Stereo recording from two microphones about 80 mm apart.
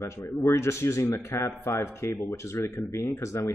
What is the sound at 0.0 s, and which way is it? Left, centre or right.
A man's voice, left.